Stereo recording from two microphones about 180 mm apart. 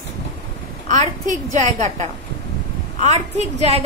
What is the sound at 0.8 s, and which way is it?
Speech, 40° right (ahead or behind).